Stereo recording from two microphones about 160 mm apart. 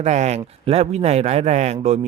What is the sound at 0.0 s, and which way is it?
Speech, 45° right (ahead or behind).